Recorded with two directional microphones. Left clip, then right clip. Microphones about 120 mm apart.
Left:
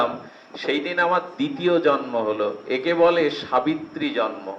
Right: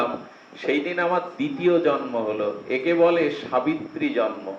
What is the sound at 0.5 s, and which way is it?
A man's voice, 45° left (ahead or behind).